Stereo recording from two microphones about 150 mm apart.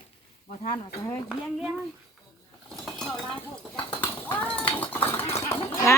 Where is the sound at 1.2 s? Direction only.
5° right (ahead or behind).